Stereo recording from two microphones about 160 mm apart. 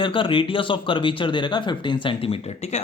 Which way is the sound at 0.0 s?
30° left (ahead or behind).